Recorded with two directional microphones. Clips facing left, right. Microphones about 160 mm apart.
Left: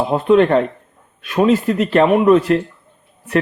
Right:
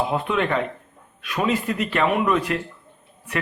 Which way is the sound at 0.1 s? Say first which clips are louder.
Left 10 dB; 40° left (ahead or behind).